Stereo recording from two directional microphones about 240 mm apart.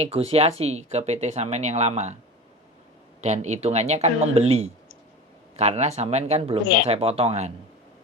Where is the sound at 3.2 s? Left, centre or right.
Right.